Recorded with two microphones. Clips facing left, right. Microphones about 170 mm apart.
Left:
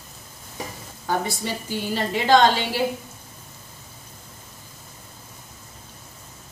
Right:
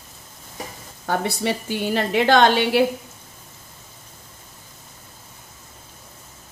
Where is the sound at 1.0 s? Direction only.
65° right (ahead or behind).